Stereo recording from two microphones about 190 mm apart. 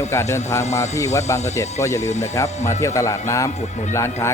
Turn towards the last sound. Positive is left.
turn(degrees=15)  # may be behind; listen again after turning